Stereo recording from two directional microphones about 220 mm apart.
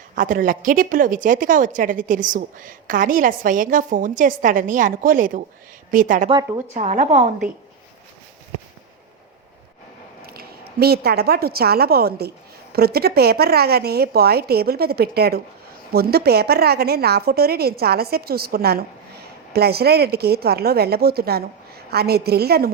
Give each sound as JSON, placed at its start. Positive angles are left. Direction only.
{"t": 0.2, "sound": "a woman's voice", "side_deg": -40}
{"t": 6.2, "sound": "speech", "side_deg": -20}
{"t": 6.7, "sound": "a woman's voice", "side_deg": -30}
{"t": 10.3, "sound": "a woman's voice", "side_deg": -45}